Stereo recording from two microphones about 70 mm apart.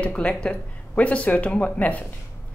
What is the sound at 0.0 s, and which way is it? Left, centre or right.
Speech, centre.